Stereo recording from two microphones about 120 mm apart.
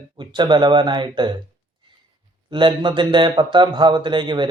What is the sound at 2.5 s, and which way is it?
Speech, 40° right (ahead or behind).